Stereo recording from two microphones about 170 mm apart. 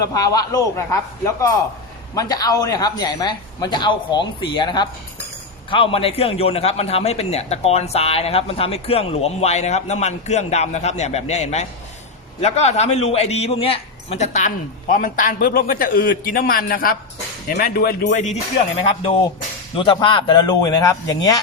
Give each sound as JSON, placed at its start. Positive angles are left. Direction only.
{"t": 0.0, "sound": "a man's voice", "side_deg": 20}
{"t": 18.0, "sound": "a man's voice", "side_deg": 45}
{"t": 18.8, "sound": "a man's voice", "side_deg": 35}